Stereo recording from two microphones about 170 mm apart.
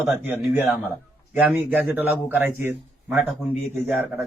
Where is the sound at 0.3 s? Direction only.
10° right (ahead or behind).